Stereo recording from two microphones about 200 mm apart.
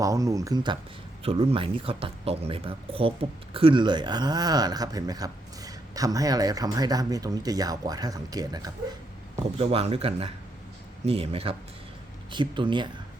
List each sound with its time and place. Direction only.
0.0 s speech: 15° right (ahead or behind)
9.6 s speech: 30° right (ahead or behind)